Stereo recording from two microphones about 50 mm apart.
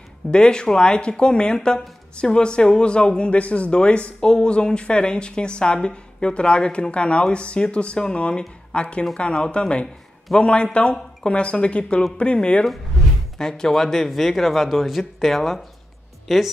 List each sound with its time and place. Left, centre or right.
0.3 s speech: centre
13.4 s speech: centre